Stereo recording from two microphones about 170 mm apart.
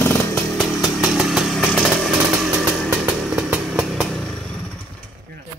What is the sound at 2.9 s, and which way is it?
Vehicle, 10° right (ahead or behind).